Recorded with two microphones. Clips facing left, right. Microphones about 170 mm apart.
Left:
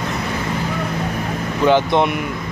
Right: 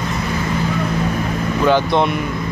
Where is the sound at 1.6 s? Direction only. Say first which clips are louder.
Left 1 dB; 20° left (ahead or behind).